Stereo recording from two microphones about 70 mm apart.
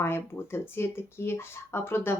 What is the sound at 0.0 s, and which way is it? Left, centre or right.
Speech, left.